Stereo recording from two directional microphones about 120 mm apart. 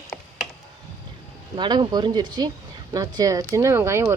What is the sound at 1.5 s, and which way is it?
Speech, 40° right (ahead or behind).